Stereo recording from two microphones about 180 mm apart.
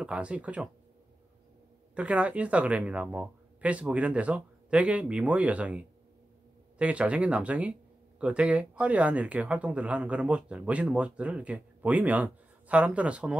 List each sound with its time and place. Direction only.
0.0 s speech: 5° right (ahead or behind)
2.0 s speech: 5° right (ahead or behind)